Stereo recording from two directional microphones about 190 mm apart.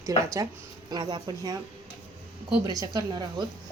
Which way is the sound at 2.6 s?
20° right (ahead or behind).